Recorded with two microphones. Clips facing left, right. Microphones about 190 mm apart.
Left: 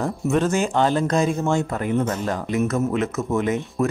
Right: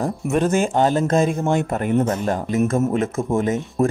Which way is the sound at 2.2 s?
45° right (ahead or behind).